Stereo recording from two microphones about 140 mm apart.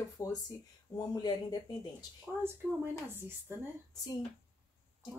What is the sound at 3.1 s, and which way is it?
Speech, 15° right (ahead or behind).